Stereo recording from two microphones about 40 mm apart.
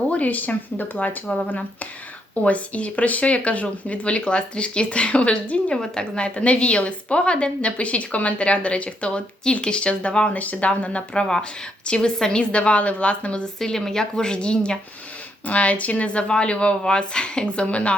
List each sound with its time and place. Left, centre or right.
0.1 s speech: left
5.7 s a woman's voice: centre
10.3 s speech: left
10.7 s a woman's voice: left
13.6 s a woman's voice: centre
15.4 s a woman's voice: left